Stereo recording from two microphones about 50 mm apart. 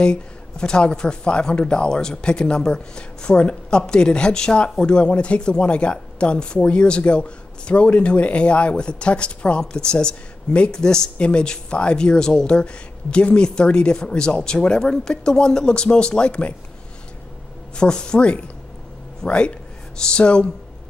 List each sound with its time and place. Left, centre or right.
0.0 s speech: centre
17.7 s speech: centre